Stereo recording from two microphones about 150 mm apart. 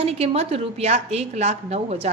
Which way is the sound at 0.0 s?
40° right (ahead or behind).